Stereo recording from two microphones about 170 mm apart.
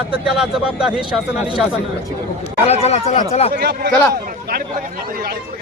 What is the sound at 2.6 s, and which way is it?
Speech, 40° left (ahead or behind).